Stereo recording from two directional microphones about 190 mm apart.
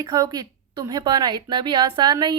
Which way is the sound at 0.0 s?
20° right (ahead or behind).